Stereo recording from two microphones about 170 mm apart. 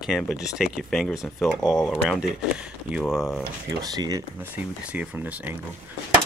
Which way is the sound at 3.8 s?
20° right (ahead or behind).